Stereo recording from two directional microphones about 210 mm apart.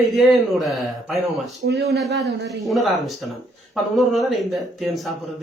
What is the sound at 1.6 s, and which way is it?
Speech, 50° right (ahead or behind).